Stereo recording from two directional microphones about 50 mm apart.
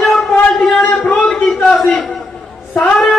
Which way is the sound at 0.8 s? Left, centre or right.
Left.